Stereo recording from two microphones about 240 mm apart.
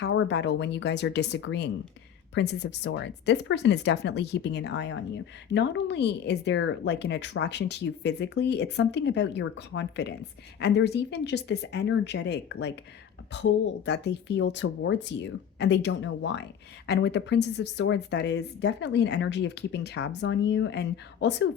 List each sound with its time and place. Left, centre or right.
0.0 s speech: left